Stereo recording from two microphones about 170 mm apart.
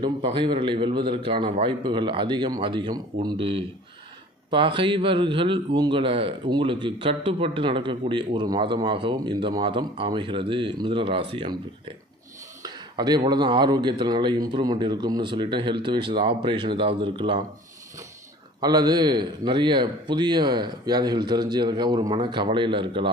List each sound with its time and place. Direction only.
0.0 s a man's voice: 30° right (ahead or behind)
12.6 s a sound: 25° right (ahead or behind)
13.3 s a man's voice: 25° right (ahead or behind)
18.6 s a man's voice: 25° right (ahead or behind)